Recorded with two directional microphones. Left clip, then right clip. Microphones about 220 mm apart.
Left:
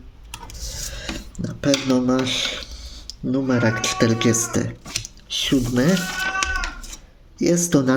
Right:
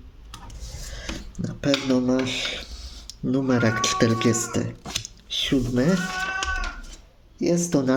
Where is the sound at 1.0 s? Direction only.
5° left (ahead or behind).